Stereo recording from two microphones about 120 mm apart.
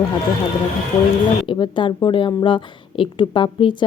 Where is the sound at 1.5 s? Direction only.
40° left (ahead or behind).